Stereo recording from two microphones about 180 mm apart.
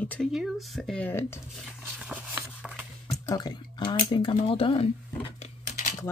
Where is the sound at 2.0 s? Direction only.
5° right (ahead or behind).